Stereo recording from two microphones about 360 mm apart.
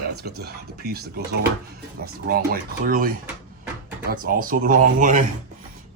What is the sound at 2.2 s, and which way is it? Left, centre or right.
Speech, right.